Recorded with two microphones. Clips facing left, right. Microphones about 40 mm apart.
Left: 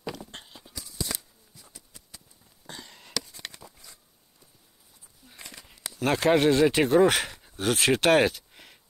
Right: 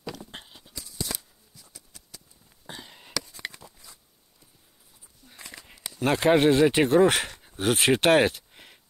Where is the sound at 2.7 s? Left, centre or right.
Centre.